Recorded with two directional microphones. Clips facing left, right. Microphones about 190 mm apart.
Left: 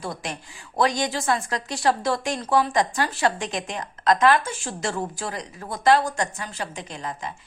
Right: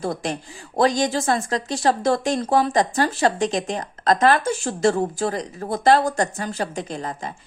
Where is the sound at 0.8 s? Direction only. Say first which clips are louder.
Right 4 dB; 35° right (ahead or behind).